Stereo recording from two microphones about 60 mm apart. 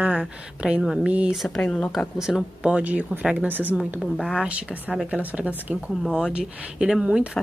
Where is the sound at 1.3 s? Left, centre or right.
Centre.